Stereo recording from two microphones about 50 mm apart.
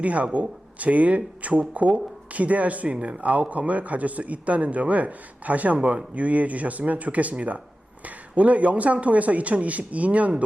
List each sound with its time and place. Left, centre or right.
0.0 s speech: right